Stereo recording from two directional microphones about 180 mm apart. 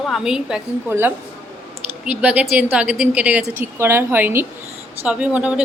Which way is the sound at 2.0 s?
5° right (ahead or behind).